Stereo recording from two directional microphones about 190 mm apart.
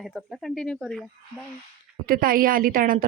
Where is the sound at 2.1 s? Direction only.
50° right (ahead or behind).